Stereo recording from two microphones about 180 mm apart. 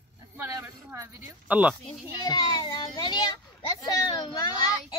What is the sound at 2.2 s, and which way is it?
A child's voice, 25° left (ahead or behind).